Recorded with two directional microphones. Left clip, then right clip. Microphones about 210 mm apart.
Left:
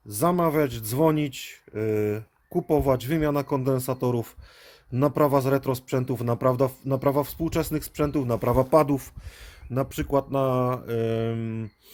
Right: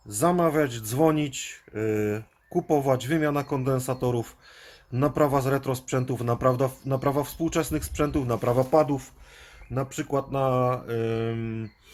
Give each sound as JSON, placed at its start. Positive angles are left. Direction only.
{"t": 0.1, "sound": "speech", "side_deg": 30}